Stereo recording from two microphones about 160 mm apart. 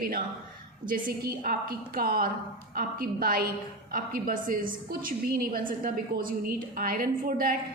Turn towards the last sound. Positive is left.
turn(degrees=-65)  # may be behind; listen again after turning